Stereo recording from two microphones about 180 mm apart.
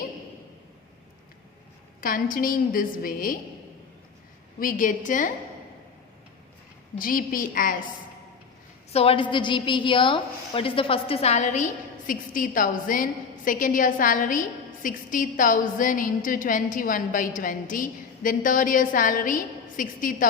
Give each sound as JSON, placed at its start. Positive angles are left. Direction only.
{"t": 2.0, "sound": "a woman's voice", "side_deg": 50}
{"t": 4.6, "sound": "a woman's voice", "side_deg": 50}
{"t": 7.0, "sound": "a woman's voice", "side_deg": 50}
{"t": 8.9, "sound": "a woman's voice", "side_deg": 35}